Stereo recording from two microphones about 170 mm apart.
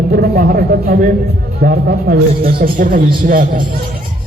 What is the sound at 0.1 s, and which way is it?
Speech, 65° right (ahead or behind).